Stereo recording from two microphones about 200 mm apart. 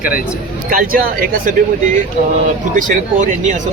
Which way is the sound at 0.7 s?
45° right (ahead or behind).